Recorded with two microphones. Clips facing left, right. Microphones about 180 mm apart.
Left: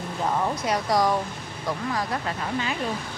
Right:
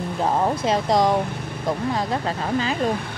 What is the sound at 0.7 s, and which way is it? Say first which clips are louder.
Speech: right 3 dB; 25° right (ahead or behind).